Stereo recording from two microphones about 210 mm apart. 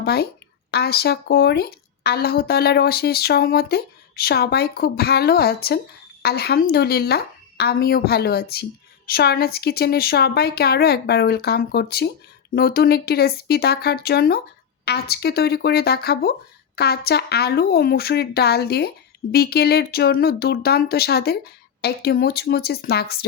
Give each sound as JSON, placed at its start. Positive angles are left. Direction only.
{"t": 0.0, "sound": "a woman's voice", "side_deg": 50}